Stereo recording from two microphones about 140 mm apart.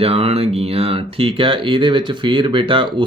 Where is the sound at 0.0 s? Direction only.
45° right (ahead or behind).